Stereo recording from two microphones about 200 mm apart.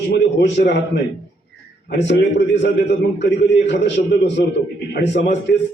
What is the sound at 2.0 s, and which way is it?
A man's voice, 60° left (ahead or behind).